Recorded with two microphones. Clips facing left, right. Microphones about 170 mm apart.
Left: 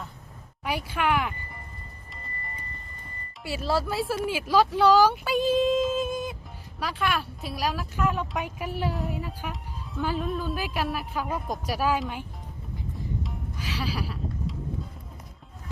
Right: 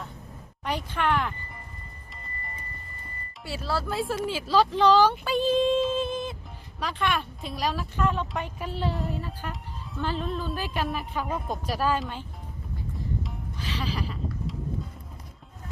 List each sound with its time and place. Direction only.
0.6 s a sound: 10° left (ahead or behind)
3.6 s speech: 20° left (ahead or behind)
3.8 s speech: 5° left (ahead or behind)
9.5 s music: centre (ahead or behind)
10.1 s speech: 5° left (ahead or behind)
13.6 s a sound: 10° left (ahead or behind)